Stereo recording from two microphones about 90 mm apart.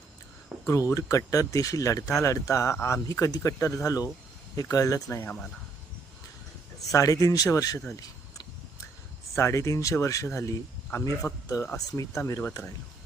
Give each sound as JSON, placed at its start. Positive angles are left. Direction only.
{"t": 0.7, "sound": "speech", "side_deg": 35}
{"t": 6.9, "sound": "speech", "side_deg": 40}
{"t": 9.3, "sound": "speech", "side_deg": 30}